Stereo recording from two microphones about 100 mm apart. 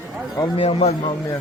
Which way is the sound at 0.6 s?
80° left.